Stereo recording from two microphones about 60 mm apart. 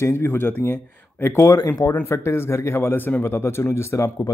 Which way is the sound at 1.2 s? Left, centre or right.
Left.